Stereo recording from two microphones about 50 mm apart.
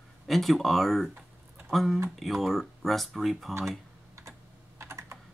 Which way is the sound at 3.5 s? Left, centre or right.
Right.